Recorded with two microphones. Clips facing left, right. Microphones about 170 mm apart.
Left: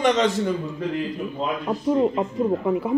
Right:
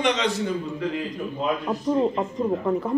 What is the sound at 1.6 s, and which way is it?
Speech, 5° left (ahead or behind).